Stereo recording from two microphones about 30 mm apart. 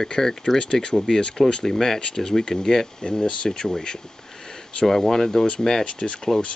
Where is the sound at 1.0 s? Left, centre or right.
Left.